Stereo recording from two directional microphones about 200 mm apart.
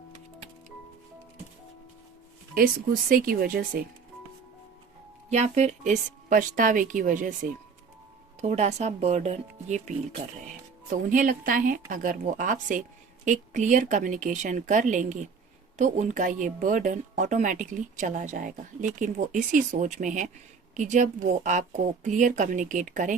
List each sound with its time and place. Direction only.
2.6 s a woman's voice: 45° right (ahead or behind)
5.3 s a woman's voice: 35° right (ahead or behind)